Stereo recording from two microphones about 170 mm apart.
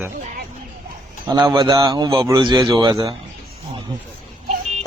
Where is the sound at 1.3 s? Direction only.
25° right (ahead or behind).